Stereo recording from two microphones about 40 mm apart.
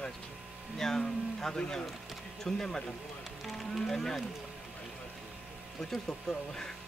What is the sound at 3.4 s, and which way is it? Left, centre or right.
Run, centre.